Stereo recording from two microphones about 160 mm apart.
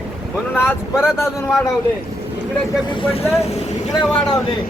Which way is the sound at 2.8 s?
30° left (ahead or behind).